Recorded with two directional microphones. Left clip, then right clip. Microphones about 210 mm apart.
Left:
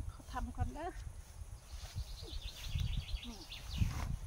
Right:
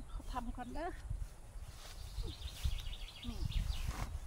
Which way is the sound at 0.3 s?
20° right (ahead or behind).